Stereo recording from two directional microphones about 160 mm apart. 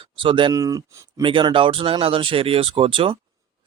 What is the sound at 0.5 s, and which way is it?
Speech, 20° right (ahead or behind).